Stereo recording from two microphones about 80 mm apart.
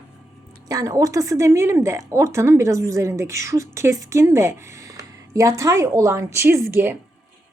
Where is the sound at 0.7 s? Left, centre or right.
Right.